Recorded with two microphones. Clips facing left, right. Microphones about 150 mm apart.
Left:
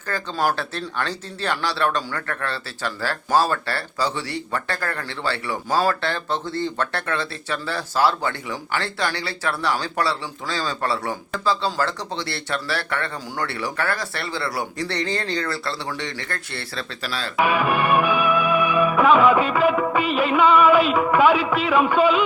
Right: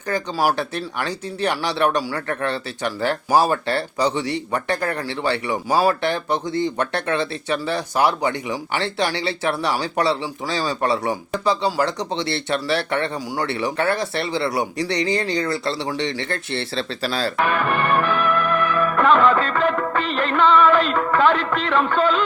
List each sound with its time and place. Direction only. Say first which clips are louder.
0.1 s speech: right 3 dB; 15° right (ahead or behind); by 17.3 s 35° right (ahead or behind)
17.3 s music: left 5 dB; 10° left (ahead or behind)